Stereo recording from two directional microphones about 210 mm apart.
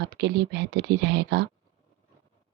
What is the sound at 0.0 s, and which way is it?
Speech, 55° right (ahead or behind).